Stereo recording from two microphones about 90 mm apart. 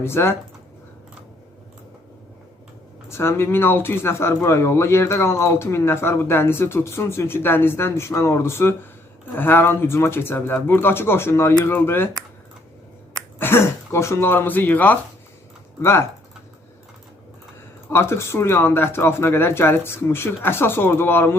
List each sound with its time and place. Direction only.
0.0 s speech: 25° left (ahead or behind)
3.1 s speech: 30° left (ahead or behind)
13.4 s speech: 25° left (ahead or behind)
15.8 s speech: 30° left (ahead or behind)
17.9 s speech: 30° left (ahead or behind)